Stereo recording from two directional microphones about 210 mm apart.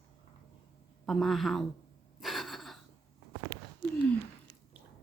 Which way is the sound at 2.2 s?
Centre (ahead or behind).